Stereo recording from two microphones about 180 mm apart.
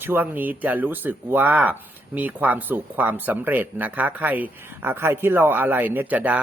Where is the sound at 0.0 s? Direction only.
10° right (ahead or behind).